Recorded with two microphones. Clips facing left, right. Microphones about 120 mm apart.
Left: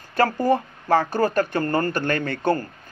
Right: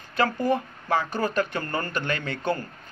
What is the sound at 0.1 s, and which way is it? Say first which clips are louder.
Speech: left 4 dB; 40° left (ahead or behind).